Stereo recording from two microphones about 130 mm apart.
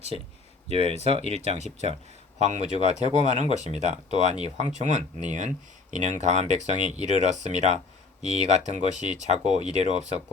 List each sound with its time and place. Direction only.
0.7 s speech: 50° right (ahead or behind)